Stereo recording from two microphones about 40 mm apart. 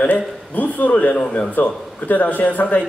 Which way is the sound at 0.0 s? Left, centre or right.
Left.